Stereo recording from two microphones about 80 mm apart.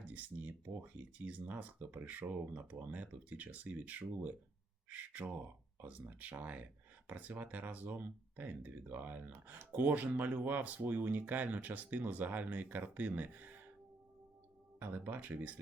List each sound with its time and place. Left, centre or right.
0.0 s speech: centre
14.8 s speech: right